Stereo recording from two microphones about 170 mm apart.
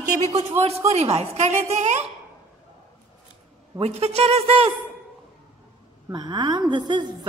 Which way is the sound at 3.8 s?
35° right (ahead or behind).